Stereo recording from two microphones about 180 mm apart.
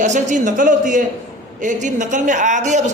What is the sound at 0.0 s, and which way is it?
A man's voice, 40° right (ahead or behind).